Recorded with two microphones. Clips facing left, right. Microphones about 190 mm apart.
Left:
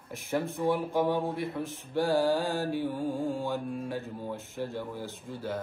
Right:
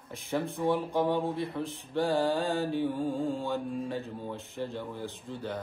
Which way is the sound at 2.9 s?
15° left (ahead or behind).